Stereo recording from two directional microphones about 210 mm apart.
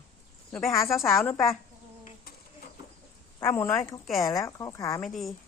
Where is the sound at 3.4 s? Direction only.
15° left (ahead or behind).